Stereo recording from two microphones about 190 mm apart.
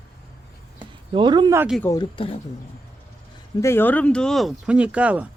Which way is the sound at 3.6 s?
10° left (ahead or behind).